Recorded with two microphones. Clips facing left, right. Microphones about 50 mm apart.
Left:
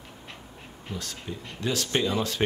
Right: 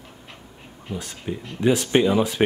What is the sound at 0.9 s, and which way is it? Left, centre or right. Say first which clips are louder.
Speech: right 6 dB; centre.